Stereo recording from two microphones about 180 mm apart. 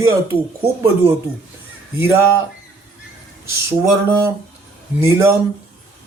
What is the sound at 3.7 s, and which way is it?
Speech, 15° right (ahead or behind).